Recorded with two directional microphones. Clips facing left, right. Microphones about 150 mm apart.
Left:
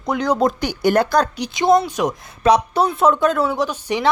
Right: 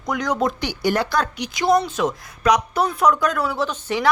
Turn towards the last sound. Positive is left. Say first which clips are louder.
# left 2 dB
turn(degrees=15)  # may be behind; listen again after turning